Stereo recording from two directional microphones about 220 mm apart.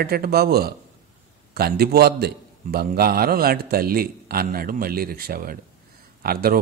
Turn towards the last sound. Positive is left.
turn(degrees=-45)  # may be behind; listen again after turning